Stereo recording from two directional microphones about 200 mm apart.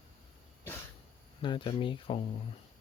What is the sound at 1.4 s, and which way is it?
Speech, 25° left (ahead or behind).